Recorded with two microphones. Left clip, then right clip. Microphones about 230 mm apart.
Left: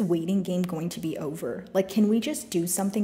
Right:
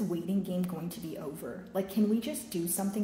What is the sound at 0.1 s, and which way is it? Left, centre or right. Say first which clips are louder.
A woman's voice: left 8 dB; left.